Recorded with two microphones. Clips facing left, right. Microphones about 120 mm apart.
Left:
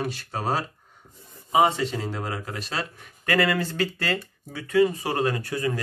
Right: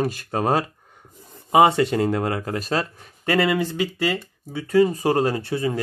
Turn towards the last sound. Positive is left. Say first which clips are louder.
# right 3 dB
turn(degrees=-25)  # may be behind; listen again after turning